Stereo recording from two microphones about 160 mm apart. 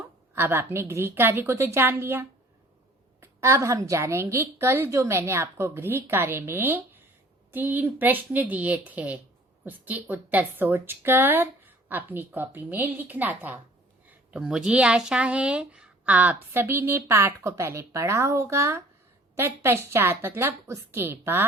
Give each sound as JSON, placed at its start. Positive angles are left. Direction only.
{"t": 0.3, "sound": "speech", "side_deg": -15}